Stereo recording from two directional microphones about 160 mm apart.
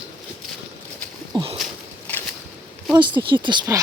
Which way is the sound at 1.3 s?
30° right (ahead or behind).